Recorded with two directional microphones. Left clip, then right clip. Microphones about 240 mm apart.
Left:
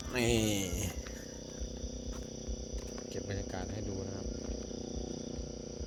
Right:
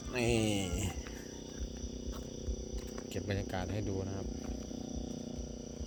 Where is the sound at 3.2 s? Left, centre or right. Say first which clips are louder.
Right 2 dB; right.